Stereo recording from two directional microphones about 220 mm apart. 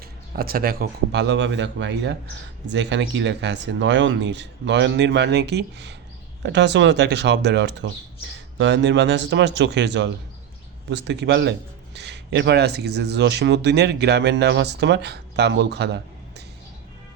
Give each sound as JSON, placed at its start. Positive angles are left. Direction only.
{"t": 0.0, "sound": "speech", "side_deg": -45}